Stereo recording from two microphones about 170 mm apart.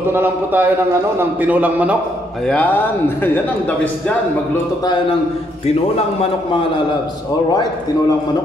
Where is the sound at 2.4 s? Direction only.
10° left (ahead or behind).